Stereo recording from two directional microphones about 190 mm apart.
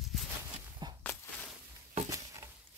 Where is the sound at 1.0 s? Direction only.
10° left (ahead or behind).